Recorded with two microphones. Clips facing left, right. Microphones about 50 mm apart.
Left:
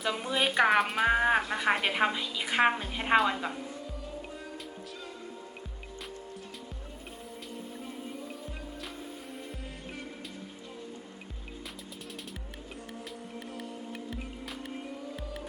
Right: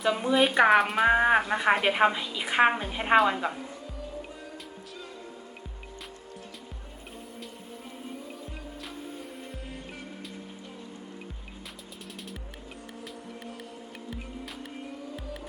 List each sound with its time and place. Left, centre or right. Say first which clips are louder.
0.0 s speech: right 6 dB; centre
1.0 s speech: right 4 dB; centre